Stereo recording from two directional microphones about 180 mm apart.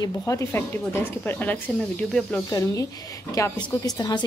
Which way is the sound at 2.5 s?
20° left (ahead or behind).